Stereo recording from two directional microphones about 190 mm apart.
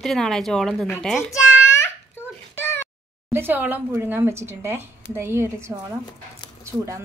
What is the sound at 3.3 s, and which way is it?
A woman's voice, 10° right (ahead or behind).